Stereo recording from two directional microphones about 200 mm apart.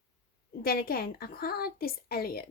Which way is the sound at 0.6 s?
50° left (ahead or behind).